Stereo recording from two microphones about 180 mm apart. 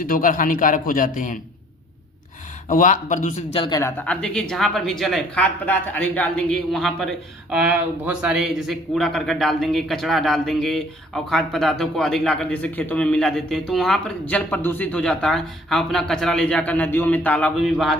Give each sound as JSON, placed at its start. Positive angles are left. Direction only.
{"t": 0.0, "sound": "a man's voice", "side_deg": 50}
{"t": 2.6, "sound": "a man's voice", "side_deg": 45}
{"t": 3.5, "sound": "a man's voice", "side_deg": 25}